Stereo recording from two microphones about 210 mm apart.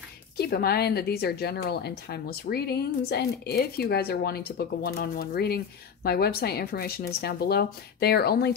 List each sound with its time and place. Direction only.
0.4 s a woman's voice: 50° left (ahead or behind)